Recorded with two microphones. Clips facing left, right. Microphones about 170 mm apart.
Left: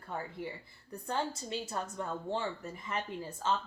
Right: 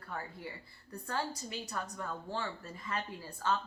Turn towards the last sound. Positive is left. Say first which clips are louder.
# left 1 dB
turn(degrees=20)  # may be behind; listen again after turning